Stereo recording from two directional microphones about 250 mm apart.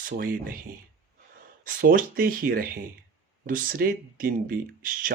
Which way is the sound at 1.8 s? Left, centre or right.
Right.